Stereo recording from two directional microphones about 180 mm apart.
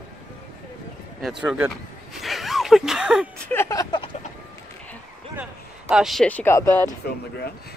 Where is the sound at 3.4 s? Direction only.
15° left (ahead or behind).